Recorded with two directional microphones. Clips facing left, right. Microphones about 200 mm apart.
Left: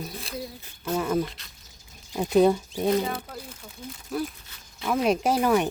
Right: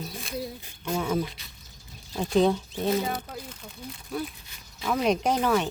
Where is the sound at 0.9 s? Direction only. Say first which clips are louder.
Left 2 dB; centre (ahead or behind).